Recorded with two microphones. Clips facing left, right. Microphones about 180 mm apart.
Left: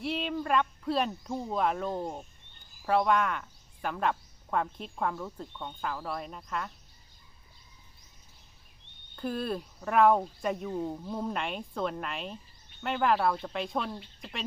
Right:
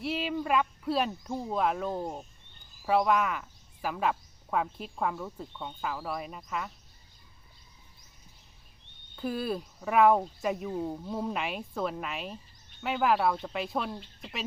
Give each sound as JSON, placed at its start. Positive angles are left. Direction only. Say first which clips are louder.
{"t": 0.0, "sound": "speech", "louder": "right 1 dB", "side_deg": 0}
{"t": 9.1, "sound": "speech", "louder": "right 1 dB", "side_deg": -5}